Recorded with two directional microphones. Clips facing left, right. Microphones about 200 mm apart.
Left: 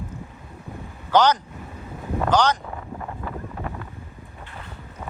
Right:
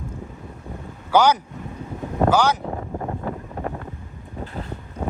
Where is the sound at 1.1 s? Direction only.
10° right (ahead or behind).